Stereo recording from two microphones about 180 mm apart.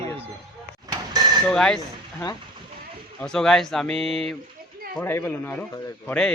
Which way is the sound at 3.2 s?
5° left (ahead or behind).